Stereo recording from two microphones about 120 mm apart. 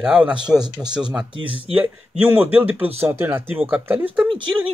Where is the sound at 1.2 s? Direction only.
45° right (ahead or behind).